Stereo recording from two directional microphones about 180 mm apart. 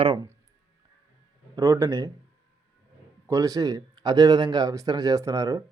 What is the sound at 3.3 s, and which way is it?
Speech, 20° right (ahead or behind).